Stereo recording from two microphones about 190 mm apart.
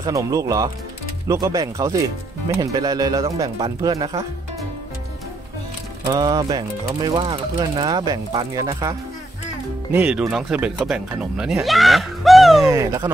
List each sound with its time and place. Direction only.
0.0 s speech: 15° right (ahead or behind)
6.0 s speech: 20° right (ahead or behind)
9.9 s speech: 5° right (ahead or behind)
12.6 s speech: 15° right (ahead or behind)